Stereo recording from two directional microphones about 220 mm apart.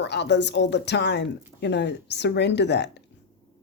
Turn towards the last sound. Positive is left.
turn(degrees=50)  # may be behind; listen again after turning